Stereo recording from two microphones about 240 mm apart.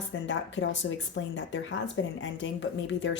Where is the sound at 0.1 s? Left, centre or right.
Left.